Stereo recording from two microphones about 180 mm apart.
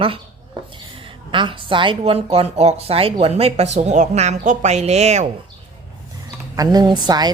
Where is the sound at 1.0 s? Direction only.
25° right (ahead or behind).